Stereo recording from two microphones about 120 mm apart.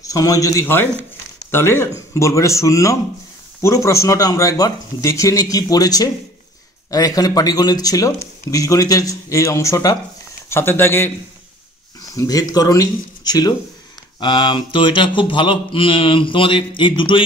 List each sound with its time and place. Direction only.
0.0 s speech: 30° left (ahead or behind)
12.1 s speech: 30° left (ahead or behind)
14.2 s a sound: 40° left (ahead or behind)